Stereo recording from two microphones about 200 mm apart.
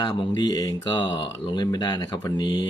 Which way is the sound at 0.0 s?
20° left (ahead or behind).